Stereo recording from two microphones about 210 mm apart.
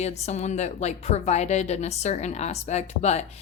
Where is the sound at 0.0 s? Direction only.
30° left (ahead or behind).